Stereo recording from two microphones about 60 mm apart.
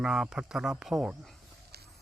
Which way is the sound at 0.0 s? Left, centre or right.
Centre.